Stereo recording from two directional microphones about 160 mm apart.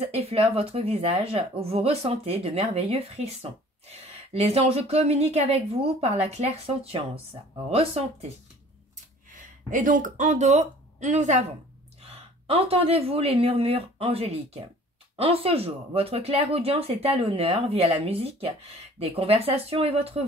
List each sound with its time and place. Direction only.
0.0 s speech: 40° right (ahead or behind)
9.3 s speech: 55° right (ahead or behind)
12.1 s speech: 35° right (ahead or behind)